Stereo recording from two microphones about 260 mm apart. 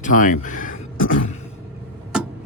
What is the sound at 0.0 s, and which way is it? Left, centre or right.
Speech, left.